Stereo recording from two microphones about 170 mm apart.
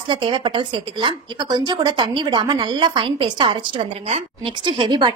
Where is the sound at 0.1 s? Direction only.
30° right (ahead or behind).